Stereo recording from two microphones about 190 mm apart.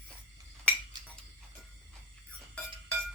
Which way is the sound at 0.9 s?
25° right (ahead or behind).